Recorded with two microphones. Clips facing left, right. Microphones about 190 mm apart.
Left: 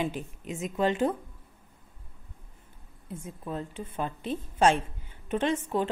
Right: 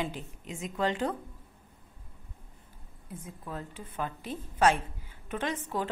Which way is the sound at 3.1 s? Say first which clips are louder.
Left 4 dB; 25° left (ahead or behind).